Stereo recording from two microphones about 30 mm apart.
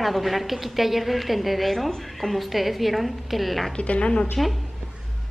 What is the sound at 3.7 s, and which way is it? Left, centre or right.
Speech, left.